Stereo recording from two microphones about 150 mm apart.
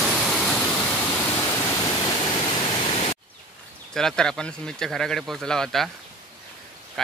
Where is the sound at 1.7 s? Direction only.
20° left (ahead or behind); by 3.2 s 40° left (ahead or behind).